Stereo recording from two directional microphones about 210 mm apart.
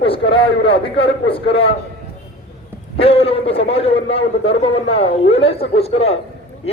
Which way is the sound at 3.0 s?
25° left (ahead or behind).